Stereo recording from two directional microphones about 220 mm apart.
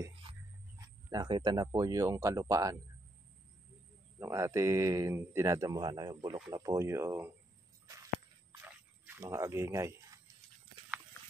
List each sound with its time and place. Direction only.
0.0 s speech: 20° right (ahead or behind)
4.2 s speech: 15° right (ahead or behind)
8.5 s a sound: 10° right (ahead or behind)